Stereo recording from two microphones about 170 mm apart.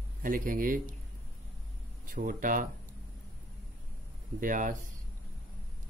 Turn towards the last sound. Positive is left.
turn(degrees=-50)  # may be behind; listen again after turning